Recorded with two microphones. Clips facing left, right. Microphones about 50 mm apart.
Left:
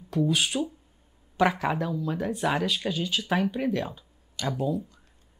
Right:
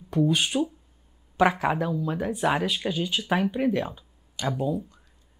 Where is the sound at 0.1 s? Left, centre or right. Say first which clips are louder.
Right 2 dB; centre.